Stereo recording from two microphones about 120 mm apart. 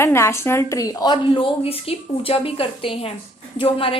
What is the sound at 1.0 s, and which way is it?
Speech, 40° left (ahead or behind).